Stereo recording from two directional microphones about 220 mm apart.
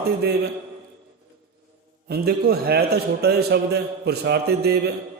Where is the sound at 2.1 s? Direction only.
45° right (ahead or behind).